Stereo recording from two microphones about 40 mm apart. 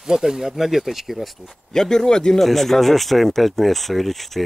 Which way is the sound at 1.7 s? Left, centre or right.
Centre.